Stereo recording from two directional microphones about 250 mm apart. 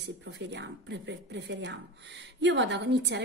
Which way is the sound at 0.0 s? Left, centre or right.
Right.